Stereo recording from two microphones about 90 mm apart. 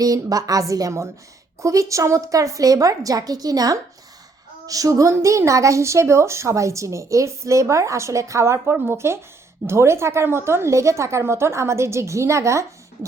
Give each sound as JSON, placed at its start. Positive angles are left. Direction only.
{"t": 0.0, "sound": "a woman's voice", "side_deg": -40}